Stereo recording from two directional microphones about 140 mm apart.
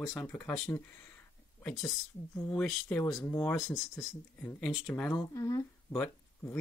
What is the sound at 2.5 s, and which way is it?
Speech, 10° left (ahead or behind).